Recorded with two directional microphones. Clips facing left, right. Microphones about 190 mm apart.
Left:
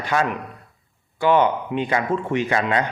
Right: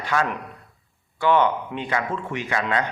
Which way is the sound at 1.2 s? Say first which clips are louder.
Left 2 dB; 15° left (ahead or behind).